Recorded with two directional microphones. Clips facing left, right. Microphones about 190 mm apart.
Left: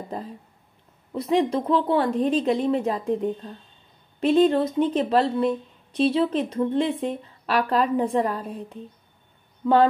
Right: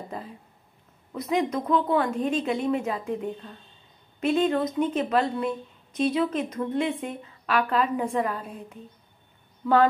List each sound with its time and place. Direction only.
1.1 s a woman's voice: 30° left (ahead or behind)